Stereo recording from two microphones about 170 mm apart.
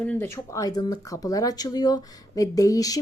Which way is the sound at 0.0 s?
10° left (ahead or behind).